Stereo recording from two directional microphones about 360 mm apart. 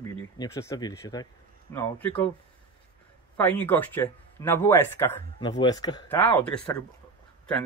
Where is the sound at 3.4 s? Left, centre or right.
Centre.